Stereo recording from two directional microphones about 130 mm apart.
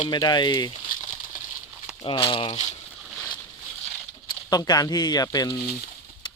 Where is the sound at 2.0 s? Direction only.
40° left (ahead or behind).